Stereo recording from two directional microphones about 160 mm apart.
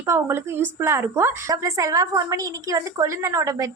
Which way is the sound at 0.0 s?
15° right (ahead or behind).